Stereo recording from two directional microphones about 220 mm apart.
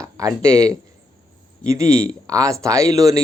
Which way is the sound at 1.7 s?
15° right (ahead or behind).